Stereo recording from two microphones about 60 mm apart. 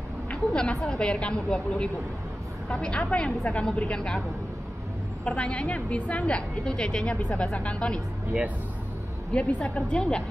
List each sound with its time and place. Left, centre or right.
0.3 s a woman's voice: centre
5.2 s a woman's voice: centre
9.3 s a woman's voice: centre